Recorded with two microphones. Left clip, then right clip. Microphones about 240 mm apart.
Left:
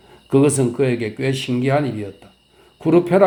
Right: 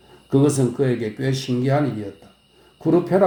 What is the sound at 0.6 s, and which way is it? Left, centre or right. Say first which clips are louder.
Speech: left 2 dB; left.